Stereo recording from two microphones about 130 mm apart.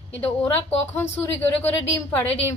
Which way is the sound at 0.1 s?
15° left (ahead or behind).